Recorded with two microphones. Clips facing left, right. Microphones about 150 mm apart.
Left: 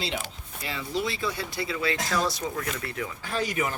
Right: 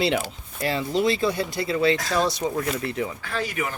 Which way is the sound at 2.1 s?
25° right (ahead or behind).